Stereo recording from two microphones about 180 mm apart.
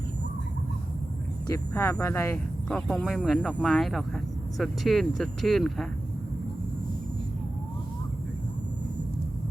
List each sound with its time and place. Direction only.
1.5 s speech: 15° left (ahead or behind)
2.6 s speech: centre (ahead or behind)